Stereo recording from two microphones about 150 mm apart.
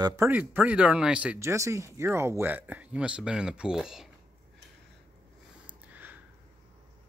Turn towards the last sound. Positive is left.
turn(degrees=-10)  # may be behind; listen again after turning